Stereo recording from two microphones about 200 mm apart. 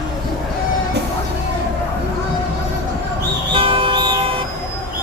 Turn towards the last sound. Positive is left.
turn(degrees=-20)  # may be behind; listen again after turning